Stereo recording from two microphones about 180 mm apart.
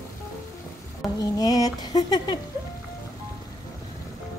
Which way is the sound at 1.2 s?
20° left (ahead or behind).